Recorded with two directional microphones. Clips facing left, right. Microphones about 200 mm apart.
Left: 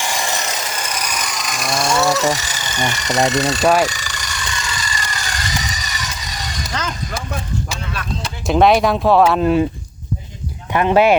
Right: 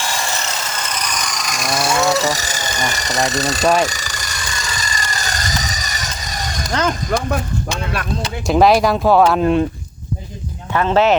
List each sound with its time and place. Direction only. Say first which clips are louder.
0.0 s a sound: left 1 dB; 15° left (ahead or behind); by 2.0 s 5° right (ahead or behind)
2.1 s speech: even; 40° right (ahead or behind)
3.6 s speech: even; 5° left (ahead or behind)
3.8 s jackhammer: even; 40° right (ahead or behind)
7.1 s speech: right 8 dB; 50° right (ahead or behind)
8.2 s speech: even; centre (ahead or behind)
10.7 s speech: left 1 dB; 15° left (ahead or behind)